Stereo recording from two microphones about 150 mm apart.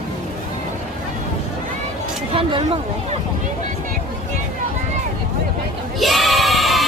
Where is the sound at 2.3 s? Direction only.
35° right (ahead or behind).